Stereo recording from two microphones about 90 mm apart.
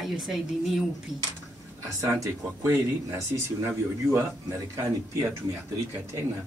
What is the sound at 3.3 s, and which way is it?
Speech, 50° right (ahead or behind).